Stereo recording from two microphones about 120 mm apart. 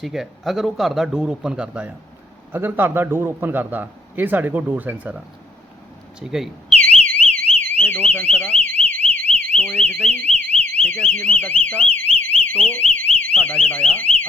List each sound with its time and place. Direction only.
0.0 s a man's voice: centre (ahead or behind)
6.7 s alarm: 10° left (ahead or behind)
10.8 s speech: 10° left (ahead or behind)